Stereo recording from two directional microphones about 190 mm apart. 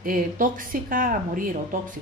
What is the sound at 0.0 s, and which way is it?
A woman's voice, 45° right (ahead or behind).